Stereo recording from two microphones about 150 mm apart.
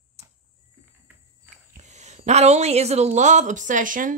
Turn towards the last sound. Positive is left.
turn(degrees=-60)  # may be behind; listen again after turning